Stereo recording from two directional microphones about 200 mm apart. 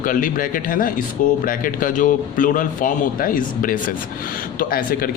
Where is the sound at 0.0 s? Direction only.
45° left (ahead or behind).